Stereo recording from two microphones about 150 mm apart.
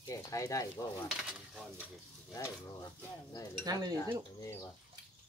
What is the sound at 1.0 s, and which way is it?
Speech, 5° right (ahead or behind).